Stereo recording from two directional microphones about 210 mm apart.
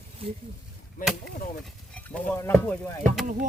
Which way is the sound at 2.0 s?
5° left (ahead or behind).